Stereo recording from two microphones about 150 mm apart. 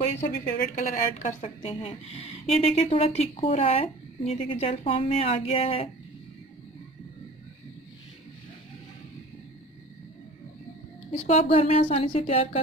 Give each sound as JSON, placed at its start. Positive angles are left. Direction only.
{"t": 0.6, "sound": "speech", "side_deg": 65}
{"t": 11.1, "sound": "speech", "side_deg": 45}